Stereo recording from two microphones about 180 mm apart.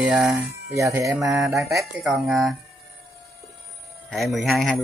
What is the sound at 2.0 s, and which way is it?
Speech, 5° right (ahead or behind).